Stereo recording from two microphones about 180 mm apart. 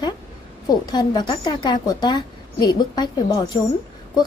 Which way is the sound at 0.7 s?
25° left (ahead or behind).